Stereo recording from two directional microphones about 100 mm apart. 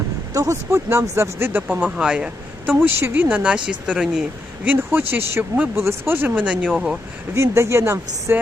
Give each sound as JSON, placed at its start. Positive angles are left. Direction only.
{"t": 0.3, "sound": "speech", "side_deg": -30}
{"t": 2.8, "sound": "speech", "side_deg": -20}
{"t": 4.6, "sound": "speech", "side_deg": -20}
{"t": 6.7, "sound": "speech", "side_deg": 0}
{"t": 7.3, "sound": "speech", "side_deg": -30}